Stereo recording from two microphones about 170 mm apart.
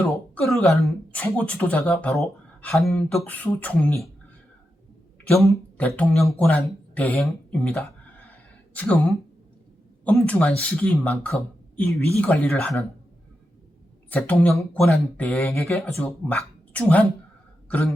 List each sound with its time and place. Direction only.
0.3 s speech: centre (ahead or behind)
5.3 s speech: centre (ahead or behind)
10.0 s speech: 5° left (ahead or behind)
11.8 s speech: 15° left (ahead or behind)
14.1 s speech: 10° left (ahead or behind)
17.7 s throat clearing: 5° left (ahead or behind)